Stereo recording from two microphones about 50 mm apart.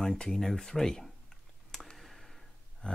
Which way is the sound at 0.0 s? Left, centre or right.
Centre.